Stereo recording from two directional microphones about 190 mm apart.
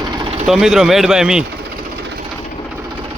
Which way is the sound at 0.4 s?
Centre (ahead or behind).